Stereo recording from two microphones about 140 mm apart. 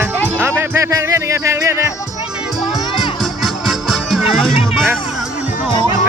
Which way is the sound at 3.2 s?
Centre (ahead or behind).